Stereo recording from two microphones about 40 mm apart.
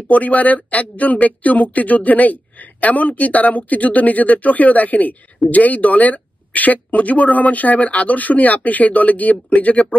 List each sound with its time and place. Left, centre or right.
0.1 s speech: left